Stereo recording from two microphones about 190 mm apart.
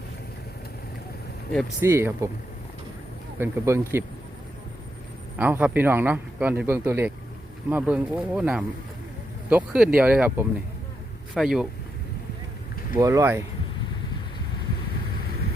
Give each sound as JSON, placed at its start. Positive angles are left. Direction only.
{"t": 1.8, "sound": "speech", "side_deg": -10}
{"t": 3.3, "sound": "speech", "side_deg": -15}
{"t": 5.4, "sound": "speech", "side_deg": -10}
{"t": 13.0, "sound": "speech", "side_deg": -15}